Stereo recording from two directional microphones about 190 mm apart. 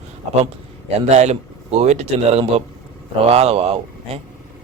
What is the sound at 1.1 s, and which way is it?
Speech, 35° right (ahead or behind).